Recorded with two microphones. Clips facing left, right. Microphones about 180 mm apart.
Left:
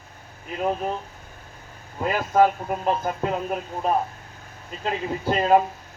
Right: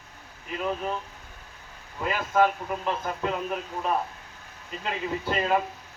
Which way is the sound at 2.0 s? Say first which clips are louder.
Left 4 dB; 40° left (ahead or behind).